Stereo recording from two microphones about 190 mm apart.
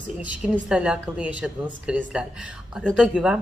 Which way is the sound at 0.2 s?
5° right (ahead or behind).